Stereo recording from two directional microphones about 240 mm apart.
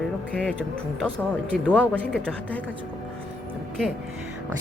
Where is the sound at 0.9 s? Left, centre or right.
Centre.